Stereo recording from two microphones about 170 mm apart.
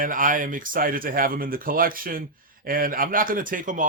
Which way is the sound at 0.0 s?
55° right (ahead or behind).